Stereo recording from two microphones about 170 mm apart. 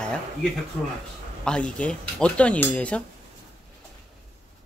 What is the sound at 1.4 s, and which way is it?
Speech, 5° left (ahead or behind).